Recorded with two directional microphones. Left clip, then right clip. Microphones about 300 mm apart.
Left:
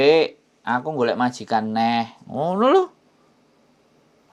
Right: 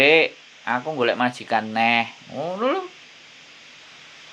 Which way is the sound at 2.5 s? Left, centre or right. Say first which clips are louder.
Left 7 dB; left.